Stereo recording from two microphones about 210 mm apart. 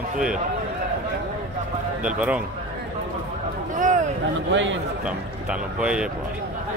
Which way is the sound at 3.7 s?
35° right (ahead or behind).